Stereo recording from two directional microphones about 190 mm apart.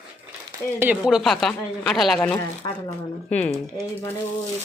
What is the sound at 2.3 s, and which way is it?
Speech, 15° left (ahead or behind).